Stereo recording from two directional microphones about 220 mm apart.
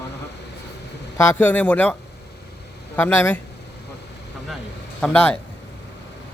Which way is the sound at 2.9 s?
10° left (ahead or behind).